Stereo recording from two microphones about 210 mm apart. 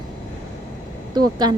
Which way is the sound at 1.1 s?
20° right (ahead or behind).